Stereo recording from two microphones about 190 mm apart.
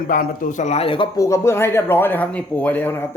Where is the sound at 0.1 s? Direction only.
45° left (ahead or behind).